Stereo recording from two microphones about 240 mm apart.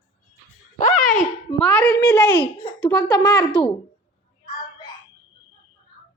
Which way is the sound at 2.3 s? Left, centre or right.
Left.